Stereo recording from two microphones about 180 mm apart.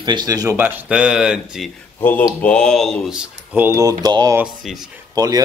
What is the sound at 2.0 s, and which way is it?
Speech, 10° left (ahead or behind).